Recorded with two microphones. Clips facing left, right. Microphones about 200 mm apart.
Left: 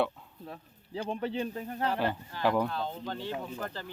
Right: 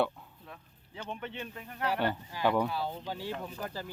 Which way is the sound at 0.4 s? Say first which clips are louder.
Left 9 dB; 30° left (ahead or behind).